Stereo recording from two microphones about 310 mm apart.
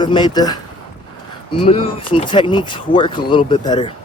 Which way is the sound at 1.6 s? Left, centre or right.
Centre.